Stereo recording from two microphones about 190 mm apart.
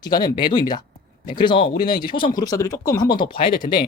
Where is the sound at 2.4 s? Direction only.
20° left (ahead or behind).